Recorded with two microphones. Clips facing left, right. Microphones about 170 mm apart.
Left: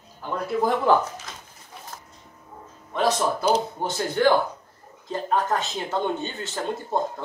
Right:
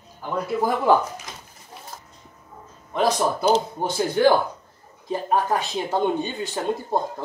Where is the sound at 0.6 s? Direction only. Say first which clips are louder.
Right 1 dB; 10° right (ahead or behind).